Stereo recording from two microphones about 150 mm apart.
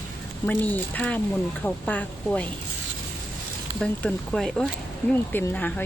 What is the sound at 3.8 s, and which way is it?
Speech, 5° left (ahead or behind).